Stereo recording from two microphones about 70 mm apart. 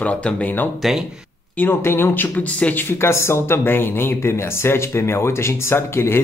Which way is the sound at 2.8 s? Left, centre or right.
Left.